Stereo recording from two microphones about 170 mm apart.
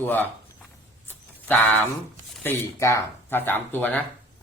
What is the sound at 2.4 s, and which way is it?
Speech, 15° left (ahead or behind).